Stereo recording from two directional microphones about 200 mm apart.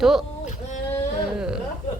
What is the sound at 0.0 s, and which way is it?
Speech, centre (ahead or behind).